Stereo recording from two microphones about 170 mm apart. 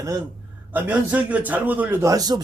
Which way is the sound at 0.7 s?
10° right (ahead or behind).